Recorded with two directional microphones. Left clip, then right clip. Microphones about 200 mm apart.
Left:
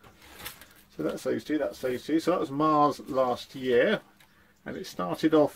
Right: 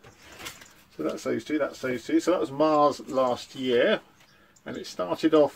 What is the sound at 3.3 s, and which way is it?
Speech, 45° left (ahead or behind).